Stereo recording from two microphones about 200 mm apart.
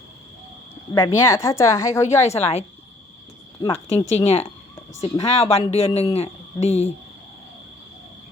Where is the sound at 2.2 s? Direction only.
30° left (ahead or behind).